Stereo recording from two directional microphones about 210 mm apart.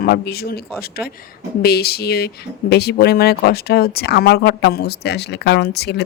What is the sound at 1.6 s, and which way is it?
Speech, 50° left (ahead or behind).